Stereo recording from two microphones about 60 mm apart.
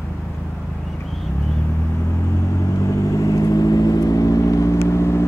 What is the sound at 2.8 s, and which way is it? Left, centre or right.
Vehicle, left.